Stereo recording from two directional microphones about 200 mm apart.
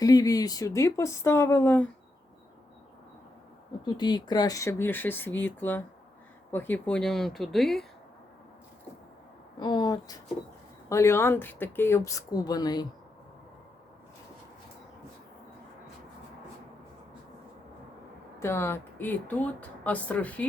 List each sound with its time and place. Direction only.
0.0 s speech: 20° left (ahead or behind)
3.8 s speech: 20° left (ahead or behind); by 7.9 s centre (ahead or behind)
9.6 s speech: 20° left (ahead or behind)
18.3 s speech: 15° left (ahead or behind)